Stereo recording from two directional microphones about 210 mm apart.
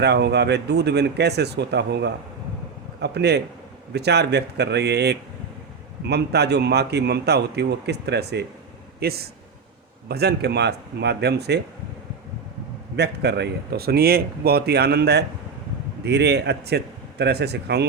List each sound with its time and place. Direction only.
0.0 s a man's voice: 50° right (ahead or behind)
13.0 s a man's voice: 50° right (ahead or behind)